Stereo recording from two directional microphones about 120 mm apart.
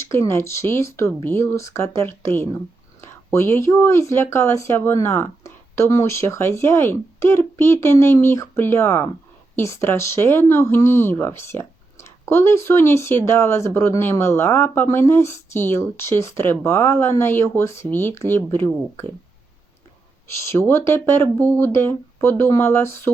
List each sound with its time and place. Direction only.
0.0 s speech: 20° left (ahead or behind)
20.4 s speech: 20° left (ahead or behind)